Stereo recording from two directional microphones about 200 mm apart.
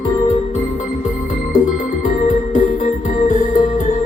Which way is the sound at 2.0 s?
40° left (ahead or behind).